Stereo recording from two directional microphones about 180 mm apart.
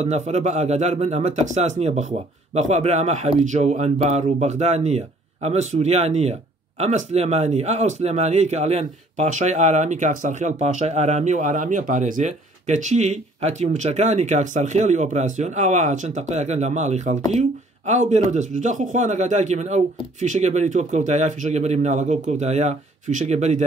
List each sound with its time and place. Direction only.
0.0 s speech: 40° right (ahead or behind)